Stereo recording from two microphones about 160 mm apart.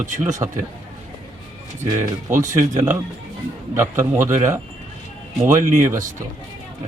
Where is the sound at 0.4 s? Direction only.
25° right (ahead or behind).